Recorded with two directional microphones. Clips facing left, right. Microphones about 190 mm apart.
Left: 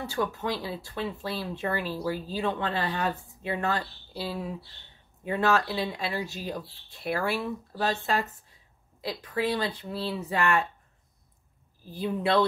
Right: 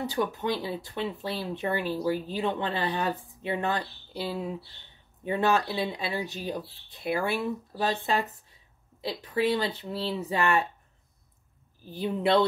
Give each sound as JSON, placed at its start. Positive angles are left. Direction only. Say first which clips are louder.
{"t": 0.0, "sound": "speech", "louder": "right 1 dB", "side_deg": -20}
{"t": 11.9, "sound": "speech", "louder": "right 1 dB", "side_deg": -20}